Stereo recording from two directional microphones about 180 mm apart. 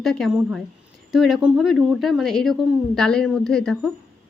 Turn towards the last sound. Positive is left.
turn(degrees=5)  # may be behind; listen again after turning